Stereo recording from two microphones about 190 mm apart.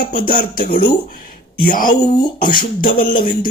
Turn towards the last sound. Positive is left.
turn(degrees=45)  # may be behind; listen again after turning